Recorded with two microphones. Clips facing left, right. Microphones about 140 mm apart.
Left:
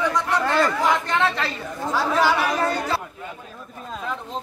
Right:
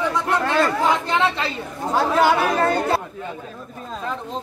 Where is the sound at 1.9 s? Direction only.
55° right (ahead or behind).